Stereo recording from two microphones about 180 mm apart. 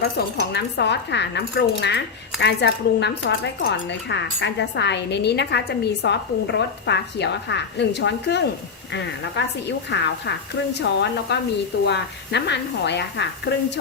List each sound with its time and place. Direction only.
0.3 s speech: 70° left (ahead or behind)